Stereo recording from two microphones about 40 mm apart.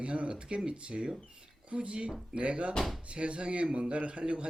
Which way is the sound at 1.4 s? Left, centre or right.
Right.